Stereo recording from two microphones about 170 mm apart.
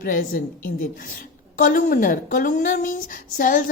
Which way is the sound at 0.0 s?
55° left (ahead or behind).